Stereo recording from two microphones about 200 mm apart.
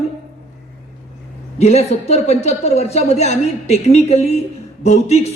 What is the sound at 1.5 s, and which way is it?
A woman's voice, 30° left (ahead or behind).